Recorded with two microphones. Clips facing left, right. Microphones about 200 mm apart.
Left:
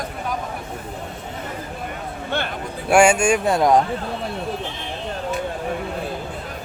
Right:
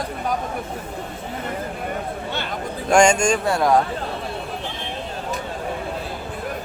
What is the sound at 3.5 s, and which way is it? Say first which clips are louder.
Speech: left 2 dB; 20° left (ahead or behind).